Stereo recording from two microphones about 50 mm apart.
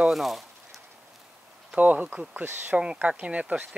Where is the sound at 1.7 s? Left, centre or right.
Right.